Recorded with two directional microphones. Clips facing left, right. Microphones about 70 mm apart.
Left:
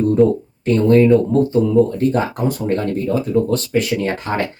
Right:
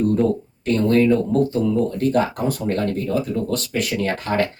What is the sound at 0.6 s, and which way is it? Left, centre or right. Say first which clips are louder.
Speech: left 5 dB; left.